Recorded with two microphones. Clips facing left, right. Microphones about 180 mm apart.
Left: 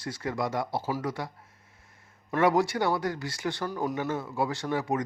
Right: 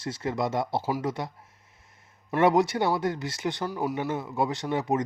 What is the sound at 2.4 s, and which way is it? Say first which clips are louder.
Speech: right 2 dB; 20° right (ahead or behind).